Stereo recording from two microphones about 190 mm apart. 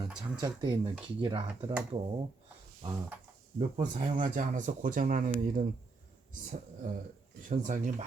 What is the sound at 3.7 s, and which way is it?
Speech, 40° right (ahead or behind).